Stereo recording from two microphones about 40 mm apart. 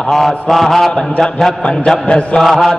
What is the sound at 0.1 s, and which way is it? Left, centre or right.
Mantra, centre.